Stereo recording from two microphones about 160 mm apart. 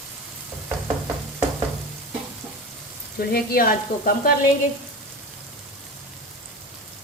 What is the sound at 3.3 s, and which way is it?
Speech, 60° left (ahead or behind).